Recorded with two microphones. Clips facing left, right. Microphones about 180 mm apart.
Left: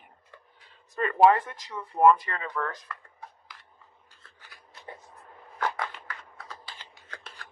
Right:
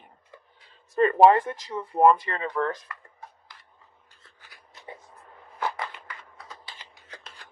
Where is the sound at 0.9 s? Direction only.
30° right (ahead or behind).